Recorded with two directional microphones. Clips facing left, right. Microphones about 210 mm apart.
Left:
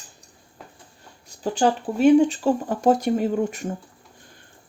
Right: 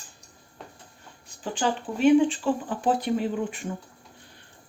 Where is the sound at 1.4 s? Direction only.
40° left (ahead or behind).